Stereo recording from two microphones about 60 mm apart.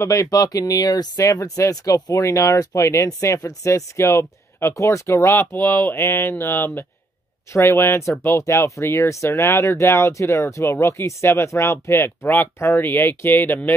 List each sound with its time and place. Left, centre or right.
0.0 s speech: left
8.4 s speech: left
12.6 s speech: left